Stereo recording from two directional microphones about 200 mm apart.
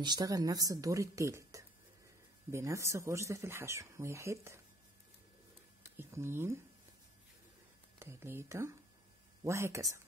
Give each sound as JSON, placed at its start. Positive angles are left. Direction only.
{"t": 0.0, "sound": "speech", "side_deg": -20}
{"t": 5.9, "sound": "speech", "side_deg": -10}
{"t": 8.0, "sound": "speech", "side_deg": -10}